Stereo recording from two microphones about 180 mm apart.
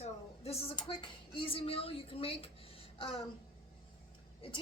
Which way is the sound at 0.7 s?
30° left (ahead or behind).